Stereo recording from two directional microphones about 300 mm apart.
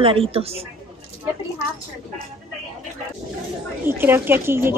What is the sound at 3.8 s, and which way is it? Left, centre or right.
Speech, centre.